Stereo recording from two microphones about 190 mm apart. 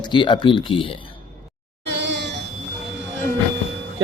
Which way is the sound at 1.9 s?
65° right (ahead or behind).